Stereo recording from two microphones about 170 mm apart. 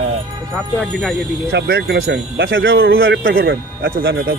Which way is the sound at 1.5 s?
85° right.